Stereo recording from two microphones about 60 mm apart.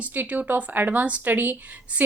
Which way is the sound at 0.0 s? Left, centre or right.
Right.